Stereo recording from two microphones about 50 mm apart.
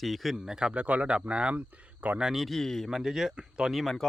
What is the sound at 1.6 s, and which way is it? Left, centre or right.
Speech, right.